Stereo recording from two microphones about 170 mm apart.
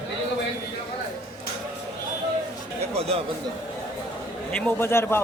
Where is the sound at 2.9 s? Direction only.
40° right (ahead or behind).